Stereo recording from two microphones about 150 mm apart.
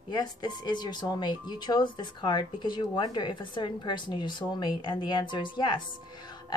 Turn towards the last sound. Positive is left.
turn(degrees=30)  # may be behind; listen again after turning